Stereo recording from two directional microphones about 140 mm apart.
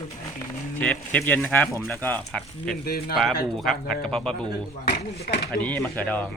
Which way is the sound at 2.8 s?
90° left.